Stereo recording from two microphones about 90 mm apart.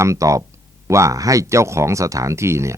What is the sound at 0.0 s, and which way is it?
Speech, 35° right (ahead or behind).